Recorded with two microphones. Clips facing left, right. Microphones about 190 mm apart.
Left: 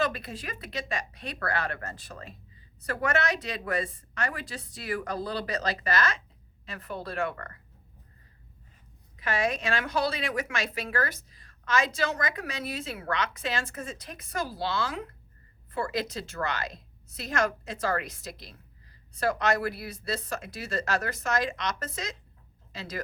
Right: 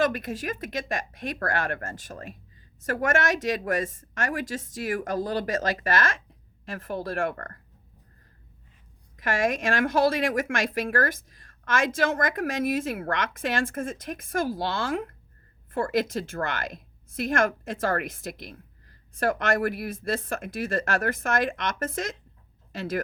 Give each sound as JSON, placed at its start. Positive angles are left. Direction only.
{"t": 0.0, "sound": "a woman's voice", "side_deg": -45}
{"t": 9.2, "sound": "a woman's voice", "side_deg": -45}